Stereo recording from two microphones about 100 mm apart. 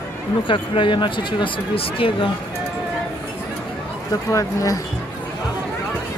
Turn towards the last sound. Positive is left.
turn(degrees=35)  # may be behind; listen again after turning